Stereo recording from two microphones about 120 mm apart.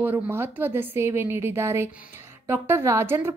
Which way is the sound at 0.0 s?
15° right (ahead or behind).